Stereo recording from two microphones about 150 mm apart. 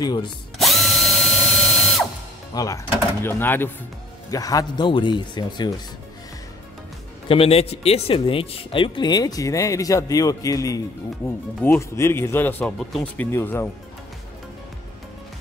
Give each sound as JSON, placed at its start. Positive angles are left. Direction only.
{"t": 0.0, "sound": "speech", "side_deg": 30}
{"t": 0.6, "sound": "drill", "side_deg": 0}
{"t": 2.5, "sound": "speech", "side_deg": 20}
{"t": 7.2, "sound": "speech", "side_deg": 40}
{"t": 12.7, "sound": "speech", "side_deg": 0}
{"t": 13.2, "sound": "speech", "side_deg": 15}